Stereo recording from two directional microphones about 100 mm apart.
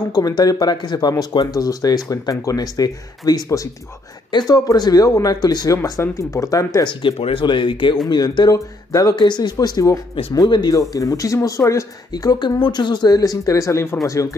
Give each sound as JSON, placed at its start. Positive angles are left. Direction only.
{"t": 0.4, "sound": "speech", "side_deg": 40}
{"t": 4.3, "sound": "speech", "side_deg": 50}
{"t": 7.0, "sound": "speech", "side_deg": 65}
{"t": 7.4, "sound": "speech", "side_deg": 55}
{"t": 8.1, "sound": "speech", "side_deg": 45}
{"t": 9.1, "sound": "speech", "side_deg": 50}